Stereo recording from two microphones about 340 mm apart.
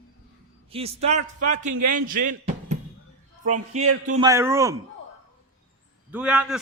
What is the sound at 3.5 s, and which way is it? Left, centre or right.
Speech, right.